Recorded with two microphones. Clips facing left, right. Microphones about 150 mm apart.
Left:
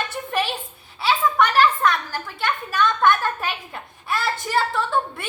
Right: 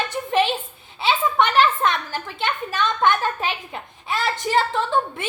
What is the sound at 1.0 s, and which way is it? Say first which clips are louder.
A woman's voice: even; 20° right (ahead or behind).